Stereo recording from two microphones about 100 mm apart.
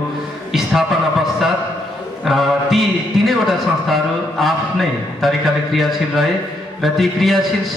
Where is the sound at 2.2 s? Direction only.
Centre (ahead or behind).